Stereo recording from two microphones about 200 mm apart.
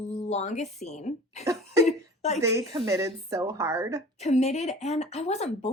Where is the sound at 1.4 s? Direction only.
15° right (ahead or behind).